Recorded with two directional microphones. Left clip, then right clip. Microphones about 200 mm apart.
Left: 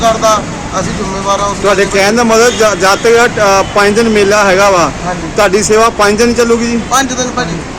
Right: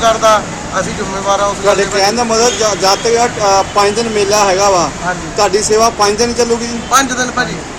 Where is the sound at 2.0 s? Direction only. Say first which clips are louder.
Left 5 dB; 40° left (ahead or behind).